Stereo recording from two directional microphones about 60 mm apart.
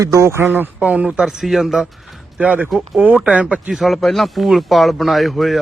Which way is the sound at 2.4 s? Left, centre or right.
Right.